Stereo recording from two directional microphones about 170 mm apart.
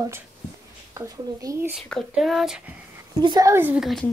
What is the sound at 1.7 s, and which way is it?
Speech, centre (ahead or behind).